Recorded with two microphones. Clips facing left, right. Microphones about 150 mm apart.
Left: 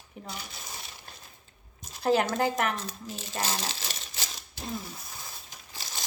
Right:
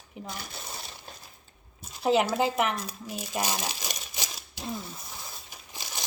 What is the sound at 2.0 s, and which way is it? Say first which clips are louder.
Speech: right 1 dB; 5° right (ahead or behind).